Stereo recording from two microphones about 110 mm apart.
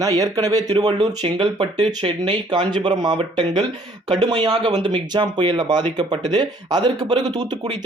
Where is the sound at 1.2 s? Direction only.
50° right (ahead or behind).